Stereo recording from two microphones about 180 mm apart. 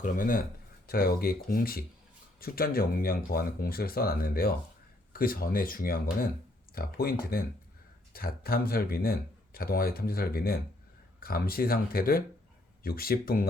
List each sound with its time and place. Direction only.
0.0 s speech: 50° left (ahead or behind)